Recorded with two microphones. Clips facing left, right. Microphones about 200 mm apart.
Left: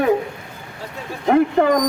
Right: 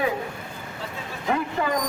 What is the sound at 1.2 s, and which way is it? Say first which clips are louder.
Speech: left 10 dB; 50° left (ahead or behind).